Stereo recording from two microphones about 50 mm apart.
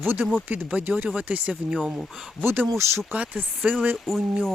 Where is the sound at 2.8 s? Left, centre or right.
Right.